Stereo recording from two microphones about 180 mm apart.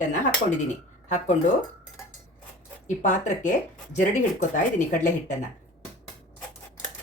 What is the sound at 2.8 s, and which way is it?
Speech, 45° left (ahead or behind).